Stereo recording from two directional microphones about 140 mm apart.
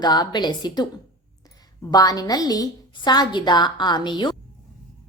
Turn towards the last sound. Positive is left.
turn(degrees=35)  # may be behind; listen again after turning